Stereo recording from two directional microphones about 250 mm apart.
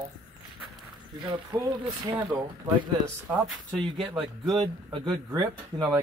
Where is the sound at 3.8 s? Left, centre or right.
Centre.